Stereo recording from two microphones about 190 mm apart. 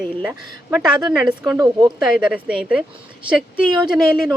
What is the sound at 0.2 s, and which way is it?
Speech, 5° right (ahead or behind).